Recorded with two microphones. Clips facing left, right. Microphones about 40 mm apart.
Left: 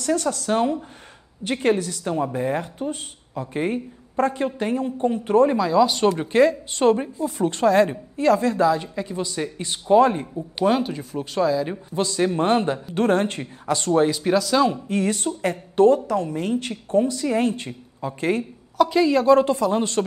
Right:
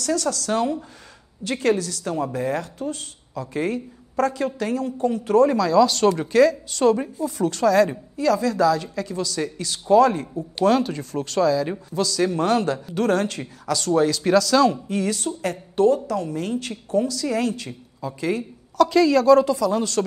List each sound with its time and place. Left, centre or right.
0.0 s a woman's voice: left
1.8 s a woman's voice: right
2.1 s a woman's voice: left
10.6 s speech: centre
11.9 s a woman's voice: left
14.1 s a woman's voice: centre
14.9 s a woman's voice: left
16.1 s a woman's voice: left
18.8 s a woman's voice: centre
19.3 s a woman's voice: left